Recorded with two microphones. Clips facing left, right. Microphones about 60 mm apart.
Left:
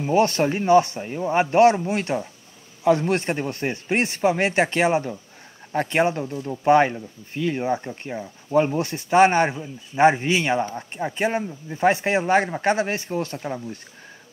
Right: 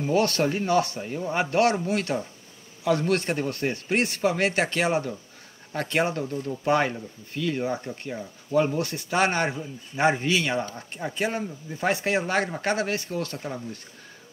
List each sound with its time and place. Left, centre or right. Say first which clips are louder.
0.0 s a man's voice: left 3 dB; left